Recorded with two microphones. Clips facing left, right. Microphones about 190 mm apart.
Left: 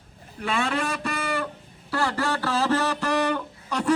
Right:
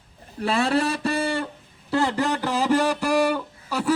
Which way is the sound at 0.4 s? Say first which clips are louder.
Right 4 dB; 35° right (ahead or behind).